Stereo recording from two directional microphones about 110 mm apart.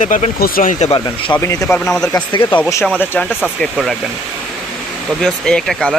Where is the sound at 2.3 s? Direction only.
45° left (ahead or behind).